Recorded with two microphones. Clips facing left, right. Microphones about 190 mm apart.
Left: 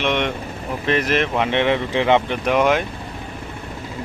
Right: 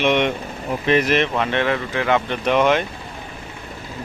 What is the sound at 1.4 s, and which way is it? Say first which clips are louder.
Speech: left 2 dB; 20° left (ahead or behind).